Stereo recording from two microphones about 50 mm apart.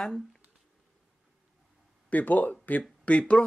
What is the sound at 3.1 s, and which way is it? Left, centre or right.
Speech, left.